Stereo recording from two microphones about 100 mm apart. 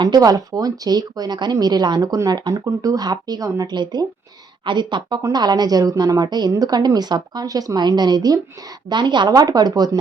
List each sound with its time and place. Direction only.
0.0 s a woman's voice: 45° right (ahead or behind)